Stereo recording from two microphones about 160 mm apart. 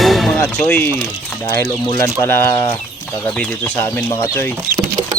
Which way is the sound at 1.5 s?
20° left (ahead or behind).